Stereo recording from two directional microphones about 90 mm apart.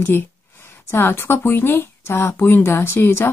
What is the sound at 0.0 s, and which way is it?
A woman's voice, 25° left (ahead or behind).